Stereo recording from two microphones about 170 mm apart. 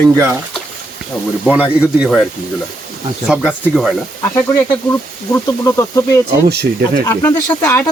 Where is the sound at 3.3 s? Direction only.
5° right (ahead or behind).